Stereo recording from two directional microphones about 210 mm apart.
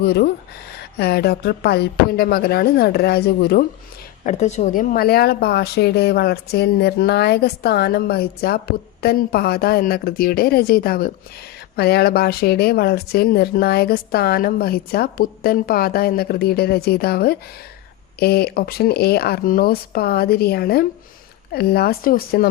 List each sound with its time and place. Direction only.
0.0 s speech: 50° left (ahead or behind)
4.2 s speech: 35° left (ahead or behind)